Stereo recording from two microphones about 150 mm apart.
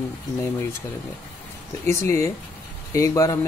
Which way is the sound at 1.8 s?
15° left (ahead or behind).